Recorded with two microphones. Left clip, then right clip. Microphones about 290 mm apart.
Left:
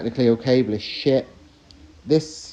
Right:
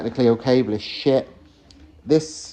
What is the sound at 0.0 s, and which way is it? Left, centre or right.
Speech, centre.